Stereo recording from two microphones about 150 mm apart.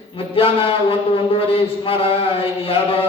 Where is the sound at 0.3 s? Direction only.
40° left (ahead or behind).